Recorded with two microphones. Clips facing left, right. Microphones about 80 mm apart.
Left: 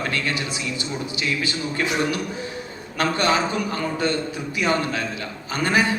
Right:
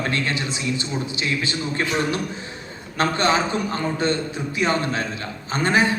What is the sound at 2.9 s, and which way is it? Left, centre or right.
Speech, right.